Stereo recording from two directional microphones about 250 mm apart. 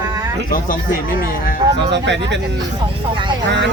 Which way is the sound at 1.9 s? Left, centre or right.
Right.